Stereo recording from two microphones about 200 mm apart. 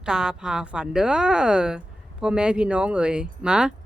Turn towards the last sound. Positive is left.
turn(degrees=-5)  # may be behind; listen again after turning